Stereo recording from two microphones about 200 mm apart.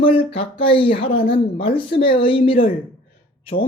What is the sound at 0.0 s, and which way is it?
Speech, 25° left (ahead or behind).